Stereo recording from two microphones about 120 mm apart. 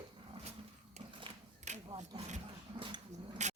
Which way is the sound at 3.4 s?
75° right (ahead or behind).